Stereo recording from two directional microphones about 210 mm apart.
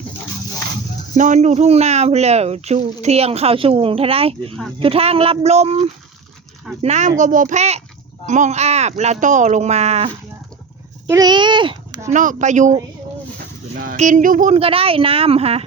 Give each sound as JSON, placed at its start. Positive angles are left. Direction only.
{"t": 1.1, "sound": "speech", "side_deg": -35}
{"t": 11.0, "sound": "a child's voice", "side_deg": -20}
{"t": 12.1, "sound": "speech", "side_deg": -40}
{"t": 13.7, "sound": "speech", "side_deg": -35}